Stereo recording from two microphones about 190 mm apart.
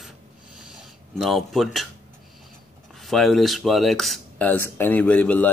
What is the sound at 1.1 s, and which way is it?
Speech, centre (ahead or behind).